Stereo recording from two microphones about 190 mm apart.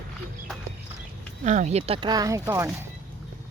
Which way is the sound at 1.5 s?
35° right (ahead or behind).